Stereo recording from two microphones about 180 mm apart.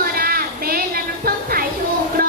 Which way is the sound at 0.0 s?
55° right (ahead or behind).